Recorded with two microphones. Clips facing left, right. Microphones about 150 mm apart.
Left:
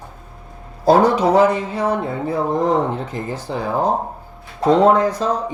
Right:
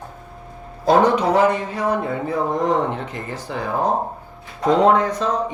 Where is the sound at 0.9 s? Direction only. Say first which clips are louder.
Left 2 dB; 35° left (ahead or behind).